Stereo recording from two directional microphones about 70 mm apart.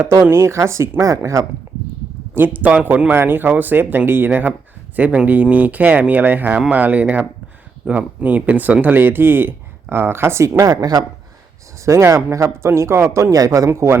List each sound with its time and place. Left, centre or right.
0.3 s speech: right
2.3 s speech: right
10.6 s speech: right
11.9 s speech: right
13.7 s speech: right